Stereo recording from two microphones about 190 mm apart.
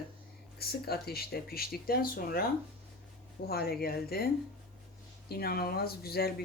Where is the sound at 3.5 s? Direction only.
55° left (ahead or behind).